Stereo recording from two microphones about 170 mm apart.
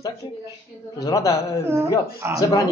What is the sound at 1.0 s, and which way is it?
Speech, 20° left (ahead or behind).